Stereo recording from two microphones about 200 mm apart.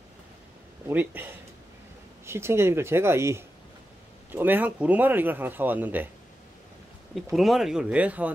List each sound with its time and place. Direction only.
0.8 s speech: 10° right (ahead or behind)
7.3 s speech: centre (ahead or behind)